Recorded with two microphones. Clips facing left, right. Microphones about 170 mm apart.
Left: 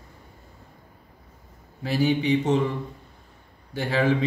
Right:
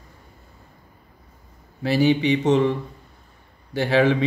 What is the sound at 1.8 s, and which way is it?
Speech, 85° right.